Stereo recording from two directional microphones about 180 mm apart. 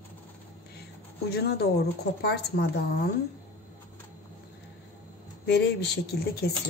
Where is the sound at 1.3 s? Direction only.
65° left (ahead or behind).